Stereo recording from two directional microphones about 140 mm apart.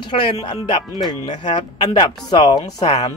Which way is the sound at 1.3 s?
35° left (ahead or behind).